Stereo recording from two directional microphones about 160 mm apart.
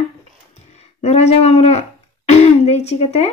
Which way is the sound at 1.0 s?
40° left (ahead or behind).